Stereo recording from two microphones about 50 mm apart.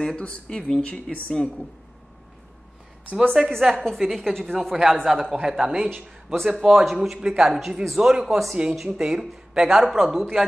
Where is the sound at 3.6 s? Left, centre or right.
Centre.